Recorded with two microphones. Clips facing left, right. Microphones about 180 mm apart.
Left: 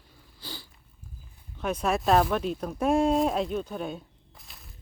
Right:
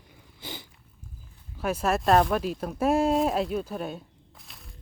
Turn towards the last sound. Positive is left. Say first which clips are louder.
# right 1 dB
turn(degrees=0)  # may be behind; listen again after turning